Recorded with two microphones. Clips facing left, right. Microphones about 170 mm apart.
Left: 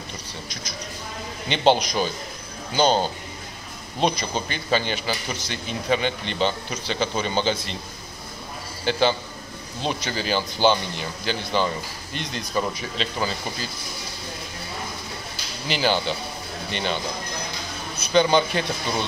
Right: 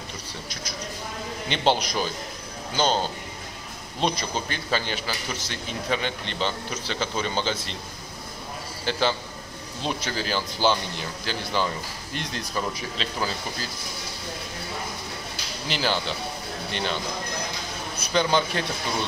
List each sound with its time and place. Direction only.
1.5 s speech: centre (ahead or behind)
8.9 s speech: centre (ahead or behind)
15.7 s speech: centre (ahead or behind)